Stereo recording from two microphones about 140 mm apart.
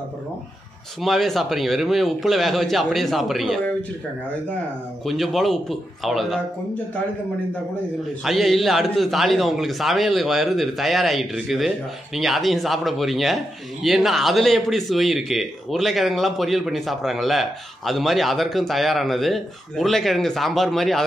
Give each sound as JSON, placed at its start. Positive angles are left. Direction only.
{"t": 1.0, "sound": "a man's voice", "side_deg": 0}
{"t": 5.0, "sound": "a man's voice", "side_deg": 0}
{"t": 8.2, "sound": "a man's voice", "side_deg": 0}